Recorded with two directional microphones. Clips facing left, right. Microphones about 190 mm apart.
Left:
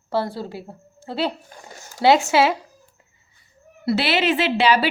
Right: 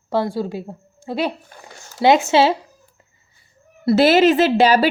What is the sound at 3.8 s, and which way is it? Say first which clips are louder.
A woman's voice: right 8 dB; 45° right (ahead or behind).